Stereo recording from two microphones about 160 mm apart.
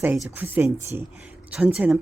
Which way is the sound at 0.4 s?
15° right (ahead or behind).